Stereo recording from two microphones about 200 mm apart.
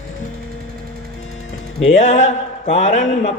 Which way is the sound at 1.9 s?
35° left (ahead or behind).